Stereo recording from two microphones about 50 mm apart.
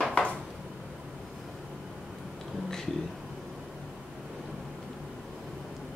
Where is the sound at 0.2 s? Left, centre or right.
Left.